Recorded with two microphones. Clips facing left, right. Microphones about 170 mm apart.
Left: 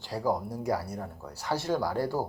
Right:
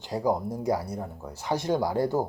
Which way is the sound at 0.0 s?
20° right (ahead or behind).